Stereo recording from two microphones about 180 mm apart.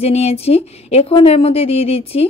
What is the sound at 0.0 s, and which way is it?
Speech, 35° left (ahead or behind).